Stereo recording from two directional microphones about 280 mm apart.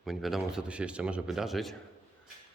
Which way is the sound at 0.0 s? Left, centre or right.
Centre.